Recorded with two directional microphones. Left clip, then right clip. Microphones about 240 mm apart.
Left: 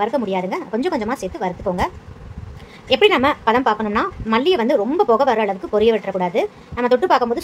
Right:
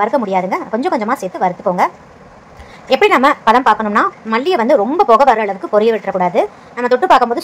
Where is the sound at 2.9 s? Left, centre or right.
Centre.